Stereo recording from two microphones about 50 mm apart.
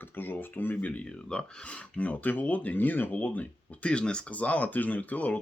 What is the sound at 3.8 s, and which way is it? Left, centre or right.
Speech, centre.